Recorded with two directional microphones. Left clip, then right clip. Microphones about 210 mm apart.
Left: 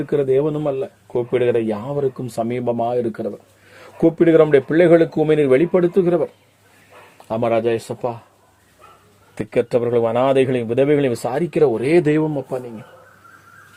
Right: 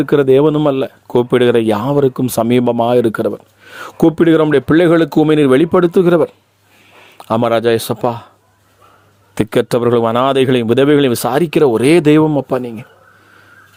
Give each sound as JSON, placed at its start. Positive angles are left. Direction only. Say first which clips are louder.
{"t": 0.0, "sound": "a man's voice", "louder": "right 7 dB", "side_deg": -40}
{"t": 9.3, "sound": "a man's voice", "louder": "right 5 dB", "side_deg": -40}